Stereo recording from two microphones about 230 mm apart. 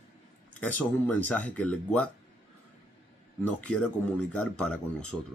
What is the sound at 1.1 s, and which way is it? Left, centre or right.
Speech, centre.